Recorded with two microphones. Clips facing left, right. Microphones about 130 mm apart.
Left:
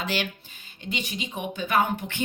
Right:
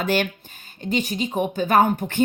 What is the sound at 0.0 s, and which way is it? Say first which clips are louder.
A woman's voice: right 7 dB; 50° right (ahead or behind).